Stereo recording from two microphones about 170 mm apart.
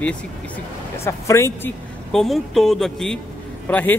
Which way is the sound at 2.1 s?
Centre (ahead or behind).